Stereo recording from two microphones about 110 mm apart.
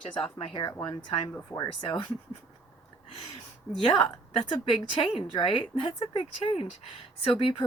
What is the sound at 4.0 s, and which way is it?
A woman's voice, 50° left (ahead or behind).